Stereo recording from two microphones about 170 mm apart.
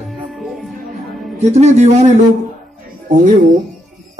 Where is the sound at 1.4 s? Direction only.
40° right (ahead or behind).